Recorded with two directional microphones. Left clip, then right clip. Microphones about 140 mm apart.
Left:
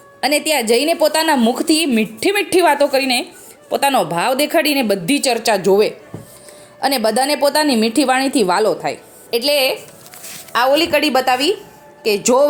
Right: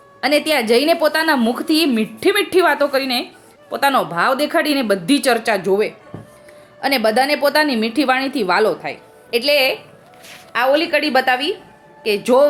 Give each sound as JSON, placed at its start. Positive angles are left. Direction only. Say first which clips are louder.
{"t": 0.2, "sound": "a woman's voice", "louder": "even", "side_deg": 25}